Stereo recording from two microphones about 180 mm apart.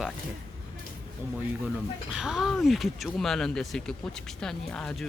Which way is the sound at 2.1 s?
5° right (ahead or behind).